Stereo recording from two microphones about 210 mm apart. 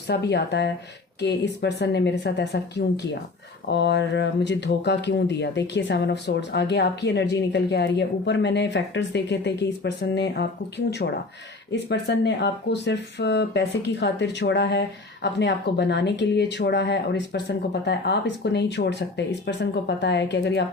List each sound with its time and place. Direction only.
0.1 s speech: 50° left (ahead or behind)